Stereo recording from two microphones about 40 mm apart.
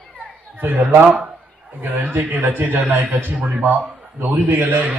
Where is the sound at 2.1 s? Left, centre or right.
Right.